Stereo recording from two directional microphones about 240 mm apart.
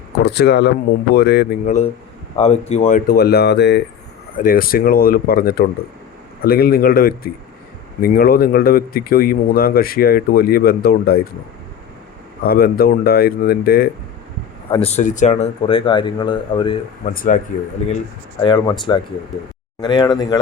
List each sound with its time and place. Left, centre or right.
0.2 s speech: left
2.3 s speech: left
12.5 s speech: left
14.7 s speech: left
17.2 s speech: left
18.4 s speech: centre